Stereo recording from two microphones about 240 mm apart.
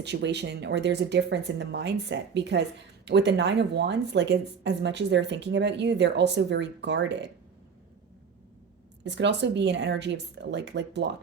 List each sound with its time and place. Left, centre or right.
0.0 s speech: right
9.0 s speech: right